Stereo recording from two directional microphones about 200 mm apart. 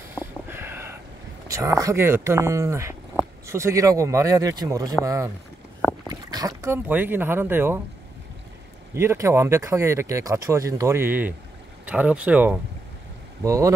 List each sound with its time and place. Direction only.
0.1 s snort: 10° right (ahead or behind)
1.5 s speech: 15° right (ahead or behind)
8.9 s speech: 15° right (ahead or behind)